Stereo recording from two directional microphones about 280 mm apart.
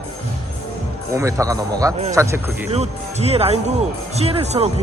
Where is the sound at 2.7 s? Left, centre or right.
Right.